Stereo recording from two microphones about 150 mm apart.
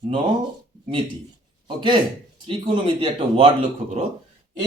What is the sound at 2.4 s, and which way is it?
Speech, 35° right (ahead or behind).